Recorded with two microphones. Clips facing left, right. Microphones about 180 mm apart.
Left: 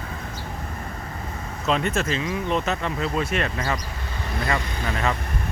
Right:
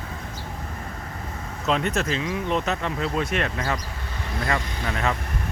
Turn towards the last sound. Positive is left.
turn(degrees=0)  # may be behind; listen again after turning